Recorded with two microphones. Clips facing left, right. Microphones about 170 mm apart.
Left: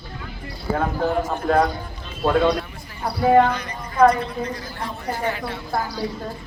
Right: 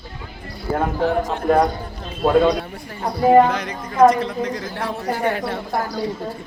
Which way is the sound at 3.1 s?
5° right (ahead or behind).